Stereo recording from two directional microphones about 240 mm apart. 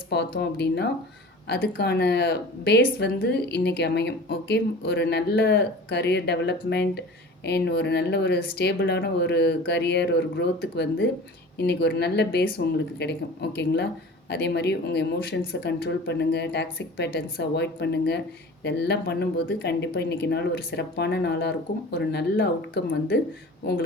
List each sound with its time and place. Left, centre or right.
0.1 s speech: left
14.3 s speech: left